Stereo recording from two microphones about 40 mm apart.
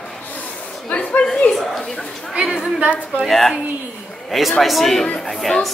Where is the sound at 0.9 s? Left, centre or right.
Left.